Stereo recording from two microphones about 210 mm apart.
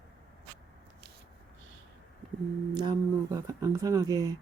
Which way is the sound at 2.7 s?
20° right (ahead or behind).